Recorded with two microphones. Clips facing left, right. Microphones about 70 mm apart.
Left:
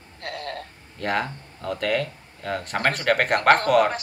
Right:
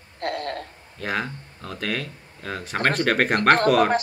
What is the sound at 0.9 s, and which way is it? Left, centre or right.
Speech, centre.